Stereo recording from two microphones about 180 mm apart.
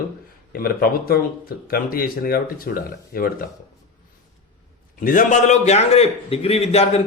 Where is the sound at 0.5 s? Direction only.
55° left (ahead or behind).